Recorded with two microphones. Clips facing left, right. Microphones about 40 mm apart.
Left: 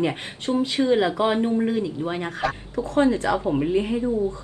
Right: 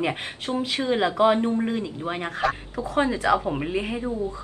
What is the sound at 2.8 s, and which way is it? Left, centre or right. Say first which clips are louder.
Speech: left 1 dB; right.